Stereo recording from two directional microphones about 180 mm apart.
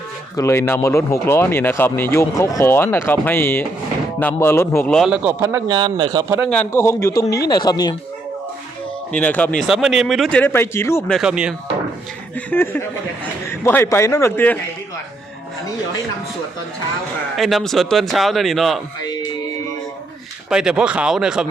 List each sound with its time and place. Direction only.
0.3 s speech: 15° left (ahead or behind)
4.9 s speech: 5° right (ahead or behind)
5.4 s speech: 15° right (ahead or behind)
6.5 s speech: 15° left (ahead or behind)
9.1 s speech: 10° left (ahead or behind)
11.2 s speech: 5° right (ahead or behind)
12.5 s speech: 10° left (ahead or behind)
17.3 s speech: centre (ahead or behind)
20.5 s speech: 5° right (ahead or behind)